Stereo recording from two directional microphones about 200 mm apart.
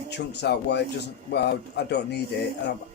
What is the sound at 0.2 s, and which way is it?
Speech, 55° left (ahead or behind).